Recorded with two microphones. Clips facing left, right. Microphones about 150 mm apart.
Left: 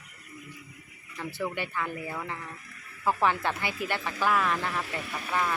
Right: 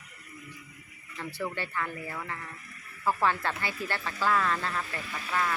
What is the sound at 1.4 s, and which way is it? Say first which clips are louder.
Speech: left 1 dB; 10° left (ahead or behind).